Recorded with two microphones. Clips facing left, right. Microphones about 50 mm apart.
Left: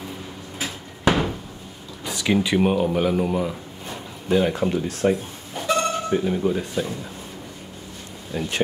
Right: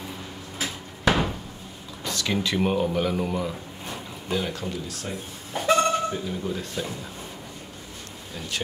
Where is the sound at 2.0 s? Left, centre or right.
Centre.